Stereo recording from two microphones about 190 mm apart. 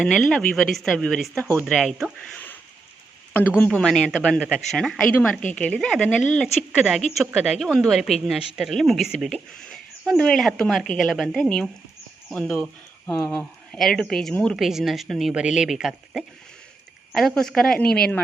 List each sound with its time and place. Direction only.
0.0 s a woman's voice: centre (ahead or behind)
3.6 s a woman's voice: 5° left (ahead or behind)
4.4 s a woman's voice: 5° right (ahead or behind)
13.1 s speech: 20° left (ahead or behind)
13.3 s a woman's voice: centre (ahead or behind)